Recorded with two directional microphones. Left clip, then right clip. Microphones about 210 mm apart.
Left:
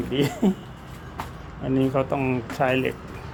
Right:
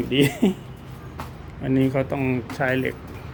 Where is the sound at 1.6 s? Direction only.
10° right (ahead or behind).